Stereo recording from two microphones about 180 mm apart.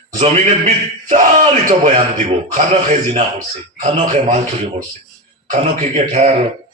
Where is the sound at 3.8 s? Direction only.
40° right (ahead or behind).